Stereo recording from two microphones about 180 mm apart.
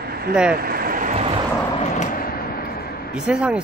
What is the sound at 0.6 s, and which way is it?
Vehicle, 55° right (ahead or behind).